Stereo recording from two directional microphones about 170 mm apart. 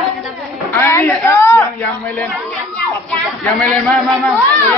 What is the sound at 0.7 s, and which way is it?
Speech, 15° left (ahead or behind).